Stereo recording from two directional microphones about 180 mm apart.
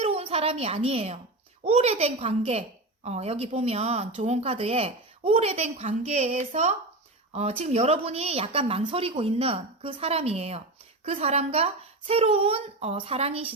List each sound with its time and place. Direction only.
0.0 s a woman's voice: 35° right (ahead or behind)